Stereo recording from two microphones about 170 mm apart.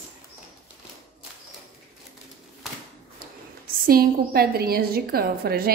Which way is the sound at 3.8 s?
60° right (ahead or behind).